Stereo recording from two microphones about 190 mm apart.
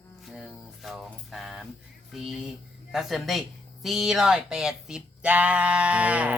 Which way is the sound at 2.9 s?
Centre (ahead or behind).